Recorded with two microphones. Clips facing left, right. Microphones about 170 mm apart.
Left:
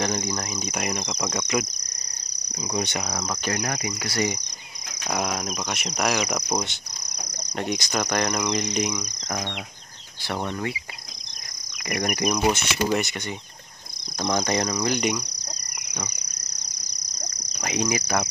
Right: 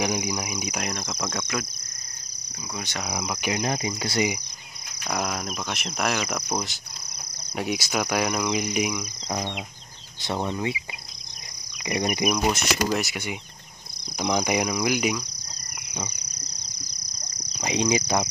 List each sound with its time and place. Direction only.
0.0 s speech: 10° right (ahead or behind)
3.0 s speech: 5° right (ahead or behind)
3.3 s speech: 20° right (ahead or behind)
5.0 s speech: centre (ahead or behind)
10.2 s speech: 20° right (ahead or behind)
11.9 s speech: 20° right (ahead or behind)
12.3 s speech: centre (ahead or behind)
14.2 s speech: 10° right (ahead or behind)
17.6 s speech: 20° right (ahead or behind)